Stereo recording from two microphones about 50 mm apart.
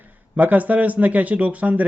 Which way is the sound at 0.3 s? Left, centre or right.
Right.